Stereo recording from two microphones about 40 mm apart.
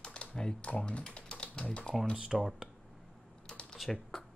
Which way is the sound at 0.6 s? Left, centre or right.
Left.